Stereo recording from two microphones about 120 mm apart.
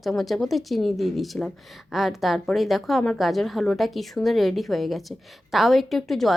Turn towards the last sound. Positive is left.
turn(degrees=0)  # may be behind; listen again after turning